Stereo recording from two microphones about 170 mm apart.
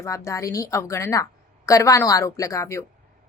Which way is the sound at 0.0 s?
15° left (ahead or behind).